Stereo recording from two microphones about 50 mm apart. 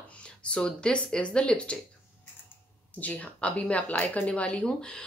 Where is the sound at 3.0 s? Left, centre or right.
Left.